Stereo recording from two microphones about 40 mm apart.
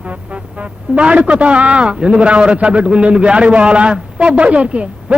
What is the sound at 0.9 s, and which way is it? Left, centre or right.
A man's voice, right.